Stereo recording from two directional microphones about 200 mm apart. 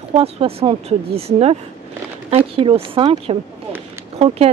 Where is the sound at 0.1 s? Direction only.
30° right (ahead or behind).